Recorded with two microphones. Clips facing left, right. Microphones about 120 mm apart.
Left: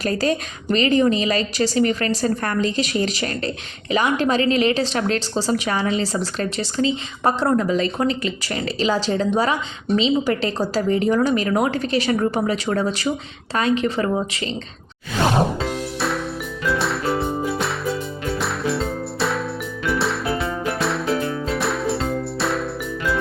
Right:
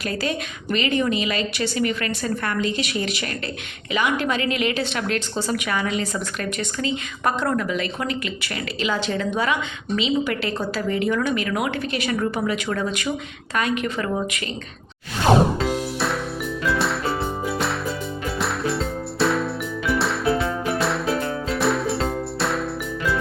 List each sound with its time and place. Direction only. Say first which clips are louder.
0.0 s a woman's voice: left 5 dB; 40° left (ahead or behind)
15.6 s music: right 1 dB; centre (ahead or behind)
18.3 s music: left 1 dB; centre (ahead or behind)